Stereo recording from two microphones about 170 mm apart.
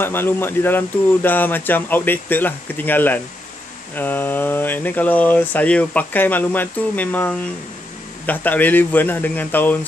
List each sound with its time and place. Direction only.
0.0 s speech: 15° left (ahead or behind)